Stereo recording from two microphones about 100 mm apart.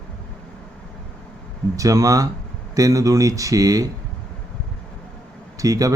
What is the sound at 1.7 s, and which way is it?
Speech, 35° right (ahead or behind).